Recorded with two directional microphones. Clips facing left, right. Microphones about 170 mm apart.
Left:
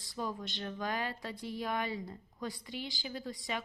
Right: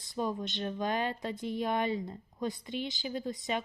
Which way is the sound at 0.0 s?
20° right (ahead or behind).